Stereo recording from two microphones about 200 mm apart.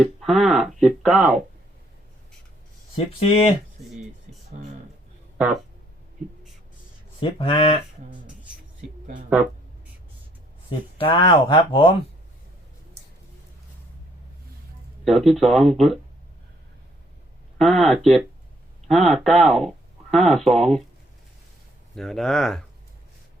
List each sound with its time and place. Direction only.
0.0 s speech: centre (ahead or behind)
2.9 s speech: 30° left (ahead or behind)
7.2 s speech: 25° left (ahead or behind)
10.7 s speech: 25° left (ahead or behind)
15.0 s speech: centre (ahead or behind)
17.6 s speech: centre (ahead or behind)
21.9 s speech: centre (ahead or behind)